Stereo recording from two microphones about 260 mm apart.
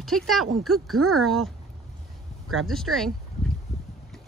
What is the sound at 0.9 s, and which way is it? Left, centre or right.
Speech, right.